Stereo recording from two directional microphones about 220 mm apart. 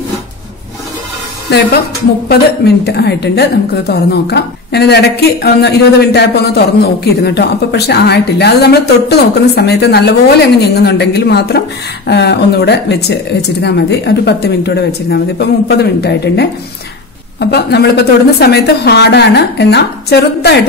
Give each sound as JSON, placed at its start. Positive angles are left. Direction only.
{"t": 1.5, "sound": "a woman's voice", "side_deg": 50}
{"t": 2.8, "sound": "a woman's voice", "side_deg": 50}